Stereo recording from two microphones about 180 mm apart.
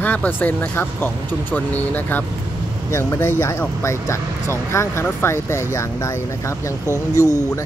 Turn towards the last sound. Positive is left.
turn(degrees=20)  # may be behind; listen again after turning